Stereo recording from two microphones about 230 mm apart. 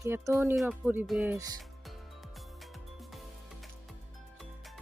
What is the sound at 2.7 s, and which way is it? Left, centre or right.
Music, centre.